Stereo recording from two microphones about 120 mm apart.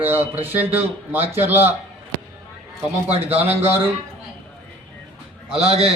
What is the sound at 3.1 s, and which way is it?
Speech, 60° right (ahead or behind).